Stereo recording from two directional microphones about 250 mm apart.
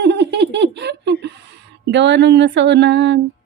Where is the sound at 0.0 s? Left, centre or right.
Right.